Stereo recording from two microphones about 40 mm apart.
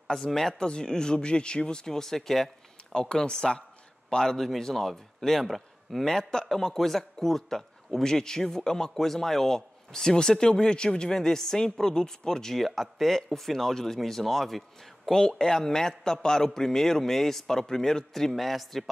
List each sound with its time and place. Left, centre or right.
0.1 s a man's voice: centre
0.6 s speech: centre
2.9 s a man's voice: centre
6.0 s a man's voice: centre
18.3 s a man's voice: centre